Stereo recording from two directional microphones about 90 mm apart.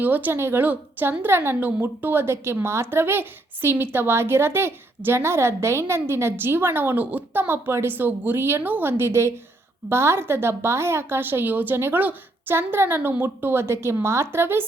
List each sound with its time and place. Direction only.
0.0 s a woman's voice: 20° right (ahead or behind)